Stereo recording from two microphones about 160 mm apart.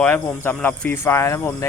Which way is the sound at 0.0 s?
10° left (ahead or behind).